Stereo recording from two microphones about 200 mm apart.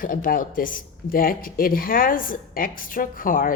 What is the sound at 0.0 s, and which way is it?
Speech, 45° left (ahead or behind).